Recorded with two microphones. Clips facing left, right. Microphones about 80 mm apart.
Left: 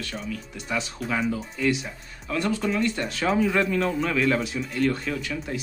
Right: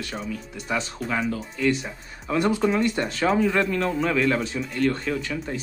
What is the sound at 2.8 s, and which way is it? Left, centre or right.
A man's voice, centre.